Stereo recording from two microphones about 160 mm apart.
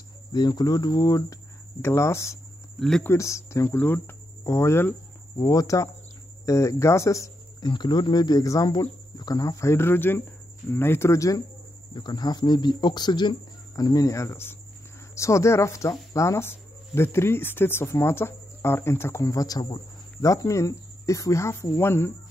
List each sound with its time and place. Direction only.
0.3 s speech: 25° left (ahead or behind)
2.8 s speech: 5° left (ahead or behind)
3.1 s speech: 20° left (ahead or behind)